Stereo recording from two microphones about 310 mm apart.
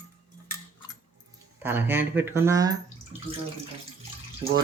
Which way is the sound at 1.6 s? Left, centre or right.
Centre.